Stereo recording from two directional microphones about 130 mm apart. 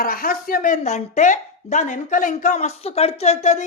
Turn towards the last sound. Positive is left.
turn(degrees=60)  # may be behind; listen again after turning